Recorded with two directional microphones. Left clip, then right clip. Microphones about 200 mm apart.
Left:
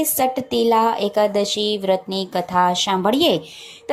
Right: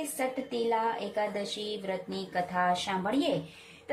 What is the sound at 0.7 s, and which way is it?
Speech, 30° left (ahead or behind).